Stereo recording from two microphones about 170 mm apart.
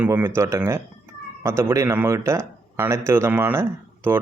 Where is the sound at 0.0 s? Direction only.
15° right (ahead or behind).